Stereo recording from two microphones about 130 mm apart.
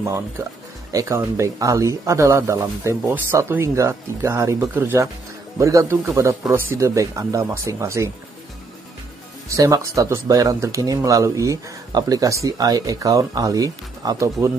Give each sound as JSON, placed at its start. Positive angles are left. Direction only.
{"t": 0.9, "sound": "speech", "side_deg": -20}
{"t": 9.5, "sound": "speech", "side_deg": -25}